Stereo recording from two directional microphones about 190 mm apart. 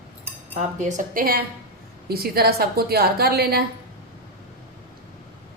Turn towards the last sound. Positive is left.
turn(degrees=-55)  # may be behind; listen again after turning